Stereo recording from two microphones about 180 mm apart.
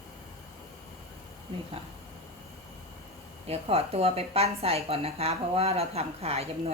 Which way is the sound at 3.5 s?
35° right (ahead or behind).